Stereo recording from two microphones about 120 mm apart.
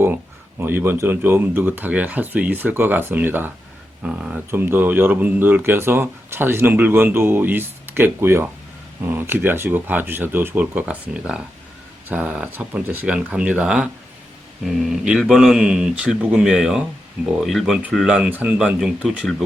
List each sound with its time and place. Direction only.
0.6 s speech: 20° right (ahead or behind); by 19.4 s centre (ahead or behind)